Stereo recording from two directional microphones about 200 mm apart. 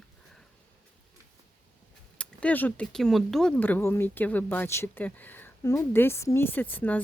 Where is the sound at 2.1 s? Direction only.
5° left (ahead or behind).